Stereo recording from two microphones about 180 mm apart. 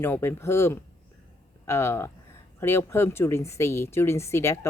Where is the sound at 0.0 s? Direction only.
10° left (ahead or behind).